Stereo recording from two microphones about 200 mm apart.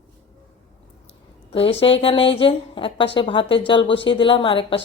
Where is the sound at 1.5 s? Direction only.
30° left (ahead or behind).